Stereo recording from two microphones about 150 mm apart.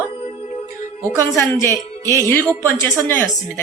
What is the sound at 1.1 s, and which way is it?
A woman's voice, 15° left (ahead or behind).